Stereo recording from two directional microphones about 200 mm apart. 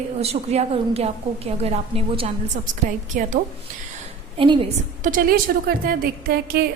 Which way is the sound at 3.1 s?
40° right (ahead or behind).